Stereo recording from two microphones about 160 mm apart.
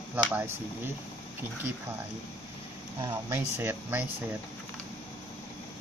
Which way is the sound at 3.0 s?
15° right (ahead or behind).